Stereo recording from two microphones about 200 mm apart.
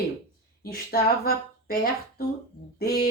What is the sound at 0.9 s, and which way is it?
Speech, 50° left (ahead or behind).